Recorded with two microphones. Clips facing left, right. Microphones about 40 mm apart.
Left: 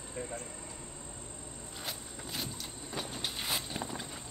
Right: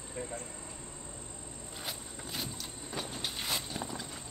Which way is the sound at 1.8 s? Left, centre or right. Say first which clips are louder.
Even; centre.